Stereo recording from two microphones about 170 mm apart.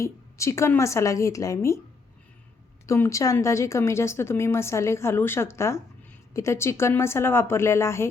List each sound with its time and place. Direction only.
0.0 s speech: 15° left (ahead or behind)
2.8 s speech: 15° left (ahead or behind)